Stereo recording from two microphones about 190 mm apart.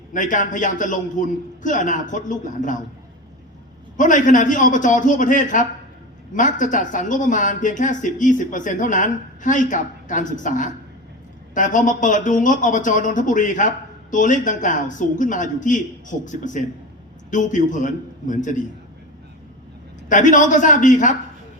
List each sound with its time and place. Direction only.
0.1 s speech: 40° left (ahead or behind)
3.9 s speech: 45° left (ahead or behind)
20.1 s a woman's voice: 40° left (ahead or behind)